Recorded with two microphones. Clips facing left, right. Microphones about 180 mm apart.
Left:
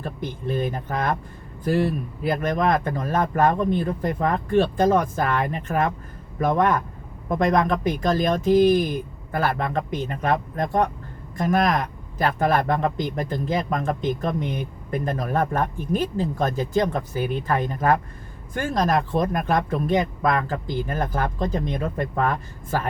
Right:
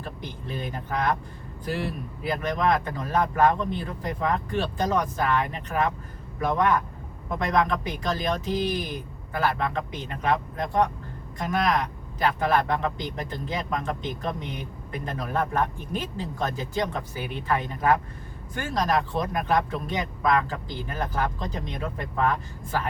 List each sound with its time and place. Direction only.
0.0 s a man's voice: 50° left (ahead or behind)